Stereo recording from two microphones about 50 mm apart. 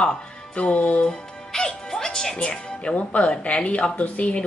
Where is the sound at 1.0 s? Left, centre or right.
Centre.